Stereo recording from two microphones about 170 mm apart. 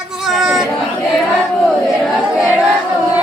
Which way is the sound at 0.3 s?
Centre (ahead or behind).